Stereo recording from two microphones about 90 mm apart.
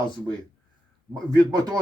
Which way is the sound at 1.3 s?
40° right (ahead or behind).